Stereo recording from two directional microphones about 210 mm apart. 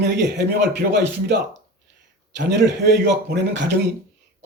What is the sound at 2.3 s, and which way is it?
Speech, 55° right (ahead or behind).